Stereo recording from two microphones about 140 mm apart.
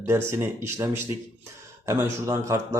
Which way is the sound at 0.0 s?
20° right (ahead or behind).